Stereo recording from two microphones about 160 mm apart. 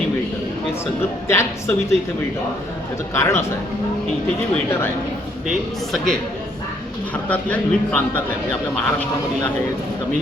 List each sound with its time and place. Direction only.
1.3 s a man's voice: 15° left (ahead or behind)
3.2 s a man's voice: 15° left (ahead or behind)
5.5 s a man's voice: centre (ahead or behind)
7.3 s a man's voice: 10° left (ahead or behind)